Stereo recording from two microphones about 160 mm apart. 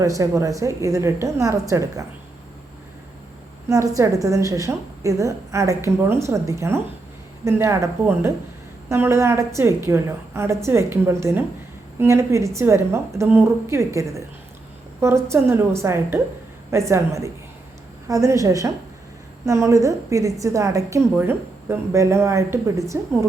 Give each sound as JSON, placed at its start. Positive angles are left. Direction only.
{"t": 0.0, "sound": "a woman's voice", "side_deg": -20}
{"t": 3.7, "sound": "a woman's voice", "side_deg": -20}